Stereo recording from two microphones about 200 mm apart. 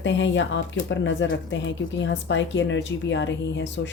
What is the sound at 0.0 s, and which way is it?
Speech, 65° left (ahead or behind).